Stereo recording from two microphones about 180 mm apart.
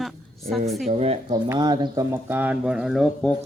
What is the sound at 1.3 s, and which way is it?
Speech, 20° right (ahead or behind).